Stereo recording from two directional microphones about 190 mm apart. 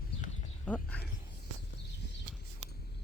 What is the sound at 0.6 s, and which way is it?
Speech, 5° left (ahead or behind).